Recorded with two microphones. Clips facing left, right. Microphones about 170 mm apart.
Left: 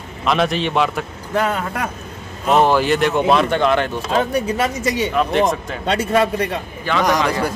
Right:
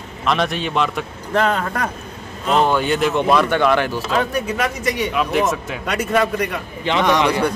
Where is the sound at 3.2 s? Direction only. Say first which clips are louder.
Right 1 dB; 25° left (ahead or behind).